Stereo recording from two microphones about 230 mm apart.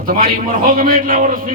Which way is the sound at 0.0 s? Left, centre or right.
Right.